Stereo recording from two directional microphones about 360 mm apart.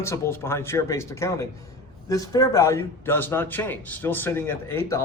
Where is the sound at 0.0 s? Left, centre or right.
Centre.